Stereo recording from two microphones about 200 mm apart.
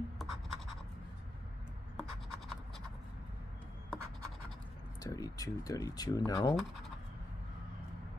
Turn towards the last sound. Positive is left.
turn(degrees=20)  # may be behind; listen again after turning